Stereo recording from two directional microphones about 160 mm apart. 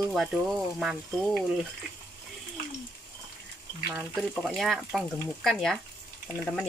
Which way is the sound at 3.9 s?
5° right (ahead or behind).